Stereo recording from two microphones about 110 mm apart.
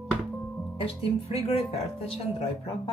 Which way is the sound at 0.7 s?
60° left (ahead or behind).